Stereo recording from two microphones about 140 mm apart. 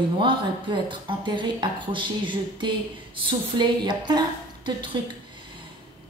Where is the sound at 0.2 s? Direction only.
35° right (ahead or behind).